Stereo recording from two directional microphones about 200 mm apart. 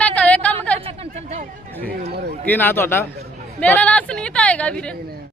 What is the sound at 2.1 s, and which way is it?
Speech, 55° right (ahead or behind).